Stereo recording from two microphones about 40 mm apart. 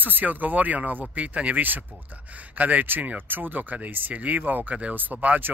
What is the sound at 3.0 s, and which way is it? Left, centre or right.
Speech, right.